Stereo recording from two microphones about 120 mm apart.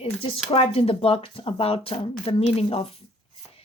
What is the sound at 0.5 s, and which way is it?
A woman's voice, 55° left (ahead or behind).